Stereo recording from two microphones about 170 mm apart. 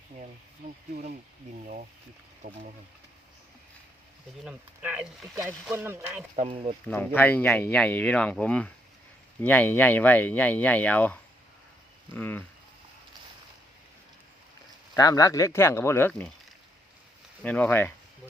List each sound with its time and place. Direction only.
2.4 s speech: 55° right (ahead or behind)
4.4 s speech: 5° right (ahead or behind)
6.3 s speech: 35° right (ahead or behind)
6.8 s speech: 10° left (ahead or behind)
14.9 s speech: 20° left (ahead or behind)
17.4 s speech: 10° left (ahead or behind)